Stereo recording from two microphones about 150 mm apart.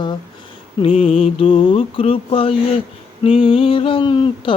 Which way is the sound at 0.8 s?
40° left (ahead or behind).